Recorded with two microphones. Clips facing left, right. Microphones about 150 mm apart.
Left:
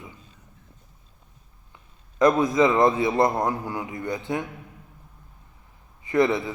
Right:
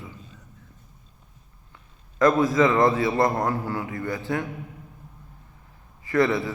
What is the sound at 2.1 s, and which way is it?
A man's voice, 20° left (ahead or behind).